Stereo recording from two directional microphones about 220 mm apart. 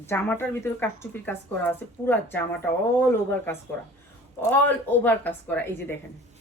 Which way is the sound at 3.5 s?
10° left (ahead or behind).